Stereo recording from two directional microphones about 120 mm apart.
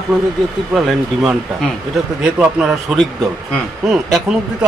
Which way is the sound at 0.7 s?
Centre (ahead or behind).